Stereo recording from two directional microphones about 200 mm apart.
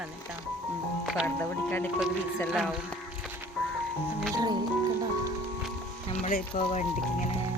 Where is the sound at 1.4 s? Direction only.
10° left (ahead or behind).